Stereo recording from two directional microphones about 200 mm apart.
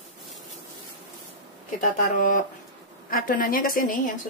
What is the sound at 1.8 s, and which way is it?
A woman's voice, 40° left (ahead or behind).